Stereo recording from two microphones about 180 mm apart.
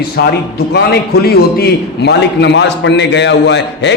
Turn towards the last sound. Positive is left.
turn(degrees=75)  # may be behind; listen again after turning